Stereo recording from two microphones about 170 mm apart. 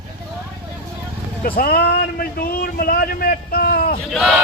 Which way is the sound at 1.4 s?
60° left (ahead or behind).